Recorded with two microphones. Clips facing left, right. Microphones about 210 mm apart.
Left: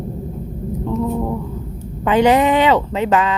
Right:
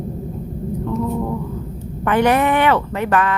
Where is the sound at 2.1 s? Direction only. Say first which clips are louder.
Left 2 dB; 15° left (ahead or behind).